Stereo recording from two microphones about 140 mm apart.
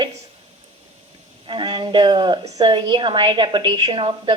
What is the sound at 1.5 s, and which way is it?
A woman's voice, 35° right (ahead or behind).